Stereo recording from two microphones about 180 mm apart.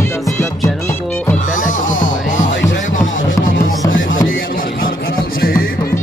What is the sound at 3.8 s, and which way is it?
Music, 90° left.